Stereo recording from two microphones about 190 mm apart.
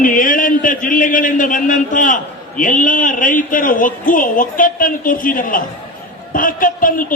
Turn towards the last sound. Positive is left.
turn(degrees=45)  # may be behind; listen again after turning